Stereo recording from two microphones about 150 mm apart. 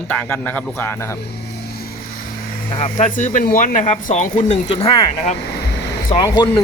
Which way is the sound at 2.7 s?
50° left (ahead or behind).